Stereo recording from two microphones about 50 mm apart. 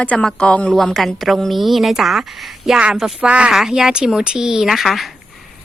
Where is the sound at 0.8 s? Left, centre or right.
Centre.